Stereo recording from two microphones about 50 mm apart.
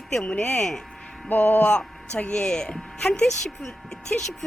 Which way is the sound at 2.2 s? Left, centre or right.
Centre.